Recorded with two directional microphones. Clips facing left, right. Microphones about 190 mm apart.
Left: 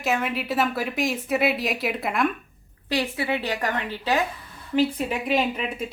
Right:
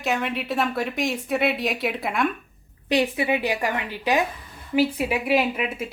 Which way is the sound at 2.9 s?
20° right (ahead or behind).